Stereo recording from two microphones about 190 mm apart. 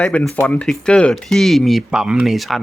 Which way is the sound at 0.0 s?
5° left (ahead or behind).